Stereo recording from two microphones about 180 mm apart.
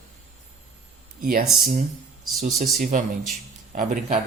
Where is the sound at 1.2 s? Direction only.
50° right (ahead or behind).